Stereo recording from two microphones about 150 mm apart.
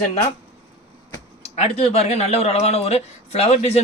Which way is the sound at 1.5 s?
40° left (ahead or behind).